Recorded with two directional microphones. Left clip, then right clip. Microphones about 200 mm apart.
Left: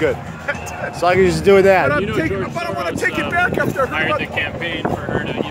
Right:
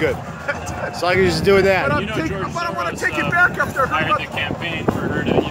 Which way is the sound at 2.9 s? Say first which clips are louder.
Right 1 dB; 30° left (ahead or behind).